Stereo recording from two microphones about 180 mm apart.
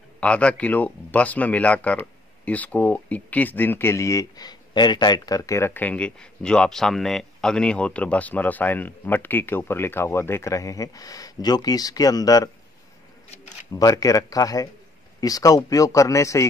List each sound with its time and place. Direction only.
0.2 s speech: 5° left (ahead or behind)
13.7 s speech: 20° left (ahead or behind)